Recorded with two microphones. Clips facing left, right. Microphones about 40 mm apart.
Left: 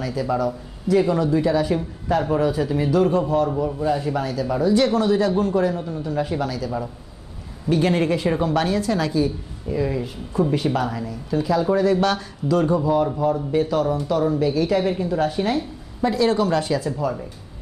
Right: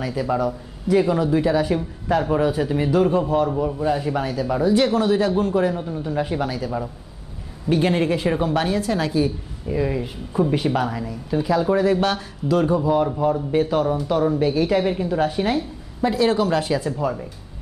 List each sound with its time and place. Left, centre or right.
0.0 s speech: centre
6.7 s speech: centre
13.5 s speech: right